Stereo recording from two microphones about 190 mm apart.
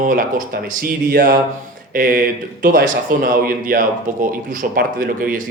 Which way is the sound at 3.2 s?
45° right (ahead or behind).